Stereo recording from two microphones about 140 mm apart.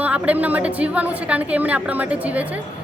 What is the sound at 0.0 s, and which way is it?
Speech, 10° right (ahead or behind).